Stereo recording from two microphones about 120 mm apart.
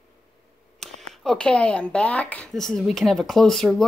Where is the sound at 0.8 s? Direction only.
5° left (ahead or behind).